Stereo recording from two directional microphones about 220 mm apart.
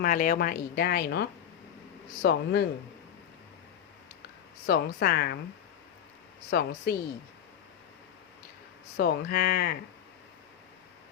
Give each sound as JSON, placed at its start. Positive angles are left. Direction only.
{"t": 0.0, "sound": "speech", "side_deg": 40}
{"t": 4.6, "sound": "speech", "side_deg": 45}
{"t": 6.5, "sound": "speech", "side_deg": 45}
{"t": 9.0, "sound": "speech", "side_deg": 45}